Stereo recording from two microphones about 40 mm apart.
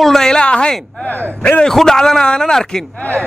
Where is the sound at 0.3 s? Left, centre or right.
Left.